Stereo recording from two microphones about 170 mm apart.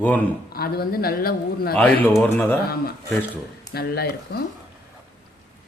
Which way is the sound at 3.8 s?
70° left (ahead or behind).